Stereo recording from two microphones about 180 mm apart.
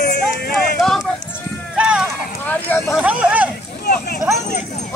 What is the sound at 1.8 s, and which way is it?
Run, 5° right (ahead or behind).